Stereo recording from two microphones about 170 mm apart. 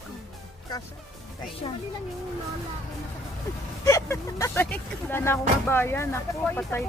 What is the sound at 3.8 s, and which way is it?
Speech, 20° left (ahead or behind).